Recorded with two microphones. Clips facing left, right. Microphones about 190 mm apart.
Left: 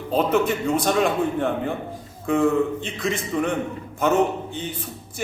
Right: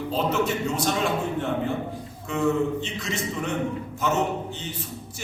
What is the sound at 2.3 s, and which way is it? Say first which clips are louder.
A man's voice: left 4 dB; 55° left (ahead or behind).